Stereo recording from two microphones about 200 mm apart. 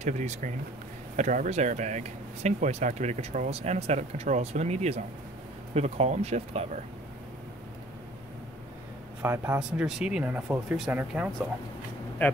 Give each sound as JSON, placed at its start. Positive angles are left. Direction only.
{"t": 0.0, "sound": "speech", "side_deg": -35}
{"t": 9.2, "sound": "speech", "side_deg": -10}